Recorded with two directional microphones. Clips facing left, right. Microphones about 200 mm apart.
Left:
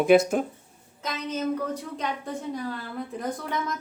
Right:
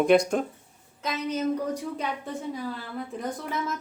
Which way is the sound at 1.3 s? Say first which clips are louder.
Even; 10° right (ahead or behind).